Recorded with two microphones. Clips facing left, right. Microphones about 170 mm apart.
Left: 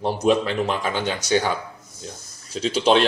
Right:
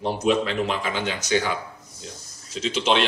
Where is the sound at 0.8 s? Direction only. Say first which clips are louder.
Left 3 dB; 35° left (ahead or behind).